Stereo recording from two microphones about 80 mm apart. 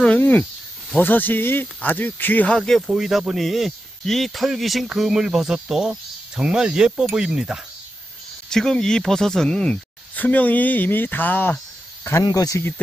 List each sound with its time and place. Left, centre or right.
0.0 s speech: centre
2.9 s speech: centre
8.5 s speech: centre
10.1 s speech: left
12.2 s speech: left